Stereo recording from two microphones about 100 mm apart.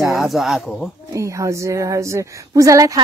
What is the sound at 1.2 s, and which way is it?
A woman's voice, 30° right (ahead or behind).